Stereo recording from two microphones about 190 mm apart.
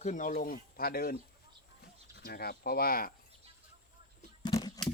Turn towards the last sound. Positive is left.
turn(degrees=20)  # may be behind; listen again after turning